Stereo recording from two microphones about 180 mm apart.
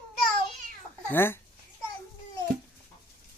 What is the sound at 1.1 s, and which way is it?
Speech, 10° left (ahead or behind).